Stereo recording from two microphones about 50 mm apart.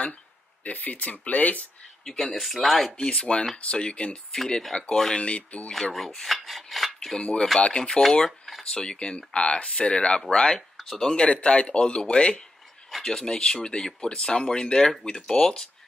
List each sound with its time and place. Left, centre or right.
0.7 s speech: left
2.0 s speech: centre
3.5 s speech: left
4.3 s speech: centre
5.1 s speech: left
5.9 s filing: centre
7.2 s speech: centre
8.3 s speech: centre
8.7 s speech: centre
10.8 s speech: centre
12.9 s speech: centre